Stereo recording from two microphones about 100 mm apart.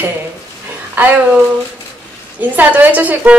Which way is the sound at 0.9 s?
15° right (ahead or behind).